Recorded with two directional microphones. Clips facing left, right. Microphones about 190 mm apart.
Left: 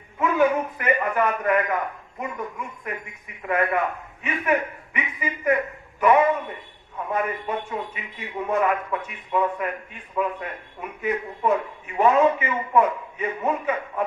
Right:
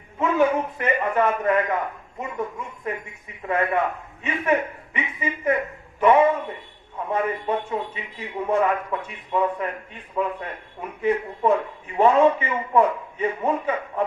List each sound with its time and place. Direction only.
0.2 s a man's voice: 25° right (ahead or behind)